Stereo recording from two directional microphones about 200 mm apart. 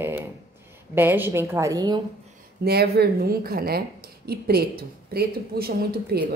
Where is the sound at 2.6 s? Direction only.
50° right (ahead or behind).